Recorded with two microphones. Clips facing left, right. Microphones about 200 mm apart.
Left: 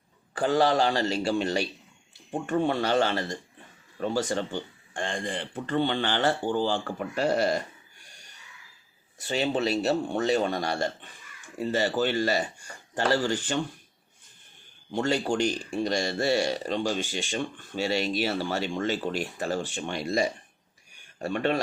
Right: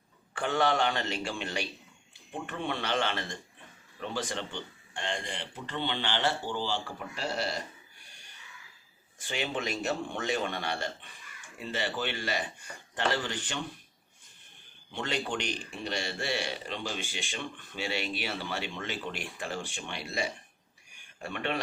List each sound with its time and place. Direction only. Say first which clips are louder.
0.3 s speech: left 5 dB; 35° left (ahead or behind)
9.2 s speech: left 7 dB; 35° left (ahead or behind)
14.9 s speech: left 8 dB; 40° left (ahead or behind)